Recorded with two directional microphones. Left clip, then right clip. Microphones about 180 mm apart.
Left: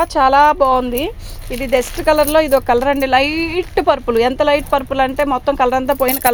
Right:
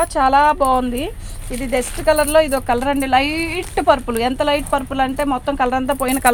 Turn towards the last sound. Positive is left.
turn(degrees=45)  # may be behind; listen again after turning